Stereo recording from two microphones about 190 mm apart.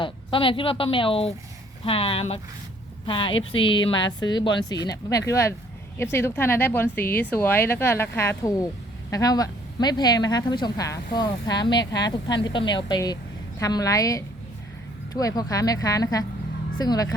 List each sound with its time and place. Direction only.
0.0 s speech: 25° left (ahead or behind)